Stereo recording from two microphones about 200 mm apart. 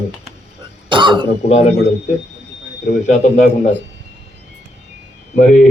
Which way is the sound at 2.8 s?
40° left (ahead or behind).